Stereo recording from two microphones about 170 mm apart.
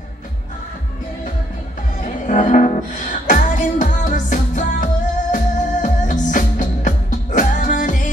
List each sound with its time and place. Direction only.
2.2 s music: 50° left (ahead or behind)